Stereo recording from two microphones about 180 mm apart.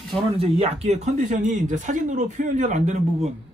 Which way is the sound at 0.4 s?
35° right (ahead or behind).